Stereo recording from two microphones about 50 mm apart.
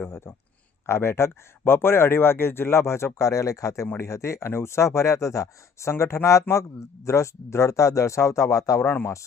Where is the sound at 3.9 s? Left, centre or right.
Left.